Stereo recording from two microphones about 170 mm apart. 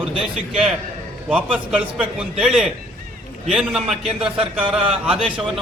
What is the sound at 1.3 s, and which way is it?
A man's voice, 5° right (ahead or behind).